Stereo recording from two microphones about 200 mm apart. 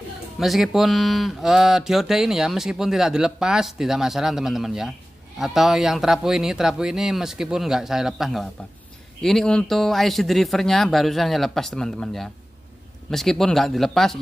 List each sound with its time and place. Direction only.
0.4 s speech: centre (ahead or behind)